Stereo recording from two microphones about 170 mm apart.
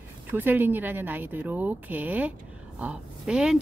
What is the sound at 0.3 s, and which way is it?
A woman's voice, 10° right (ahead or behind).